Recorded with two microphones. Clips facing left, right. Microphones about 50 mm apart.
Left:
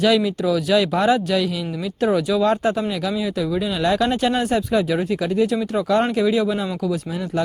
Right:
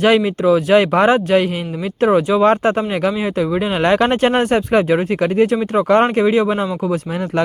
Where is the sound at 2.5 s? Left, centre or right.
Right.